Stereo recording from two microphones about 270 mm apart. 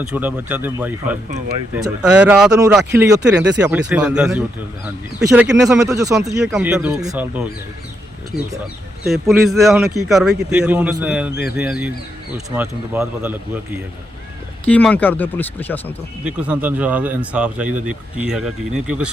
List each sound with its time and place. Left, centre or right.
0.0 s speech: centre
3.3 s speech: right
3.6 s speech: centre
9.0 s speech: centre
14.6 s speech: centre
16.2 s speech: centre